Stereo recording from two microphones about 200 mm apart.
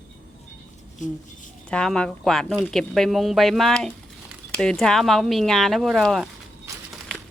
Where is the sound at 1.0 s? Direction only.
40° left (ahead or behind).